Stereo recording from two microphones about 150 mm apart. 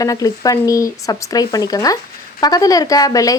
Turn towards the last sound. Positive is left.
turn(degrees=25)  # may be behind; listen again after turning